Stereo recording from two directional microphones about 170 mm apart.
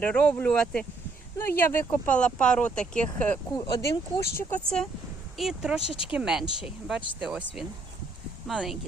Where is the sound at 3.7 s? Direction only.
20° left (ahead or behind).